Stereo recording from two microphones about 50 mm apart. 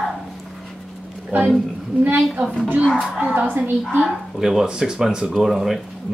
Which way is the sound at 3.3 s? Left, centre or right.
Right.